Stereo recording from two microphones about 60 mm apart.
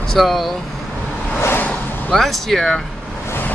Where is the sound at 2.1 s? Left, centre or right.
Centre.